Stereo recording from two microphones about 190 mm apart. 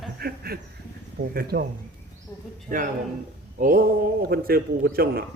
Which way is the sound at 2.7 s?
45° right (ahead or behind).